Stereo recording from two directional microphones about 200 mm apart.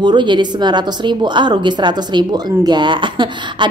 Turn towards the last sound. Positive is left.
turn(degrees=-25)  # may be behind; listen again after turning